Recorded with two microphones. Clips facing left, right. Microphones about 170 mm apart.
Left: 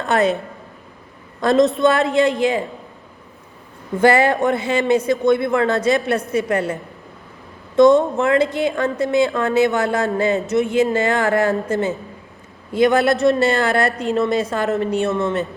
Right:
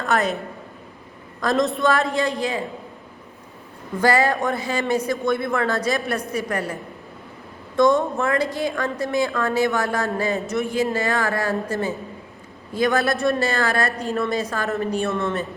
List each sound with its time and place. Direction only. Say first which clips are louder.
0.0 s a woman's voice: left 4 dB; 25° left (ahead or behind)
1.4 s a woman's voice: left 6 dB; 25° left (ahead or behind)
4.0 s a woman's voice: left 5 dB; 25° left (ahead or behind)
7.8 s a woman's voice: left 6 dB; 20° left (ahead or behind)